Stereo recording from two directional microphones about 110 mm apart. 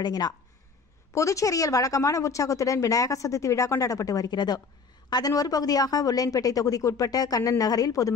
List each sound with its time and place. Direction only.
0.0 s a woman's voice: 40° left (ahead or behind)